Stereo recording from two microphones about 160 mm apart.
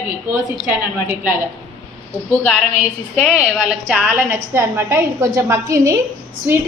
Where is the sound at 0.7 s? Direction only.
15° right (ahead or behind).